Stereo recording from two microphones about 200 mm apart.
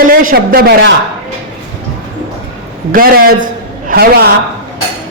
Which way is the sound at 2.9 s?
45° right (ahead or behind).